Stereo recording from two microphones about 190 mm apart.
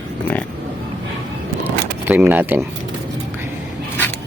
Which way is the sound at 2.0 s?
10° right (ahead or behind).